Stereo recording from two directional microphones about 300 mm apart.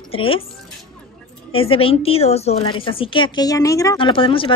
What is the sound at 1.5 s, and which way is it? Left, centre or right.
A woman's voice, centre.